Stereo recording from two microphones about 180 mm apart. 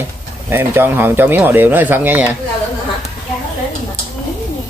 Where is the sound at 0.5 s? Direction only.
10° right (ahead or behind).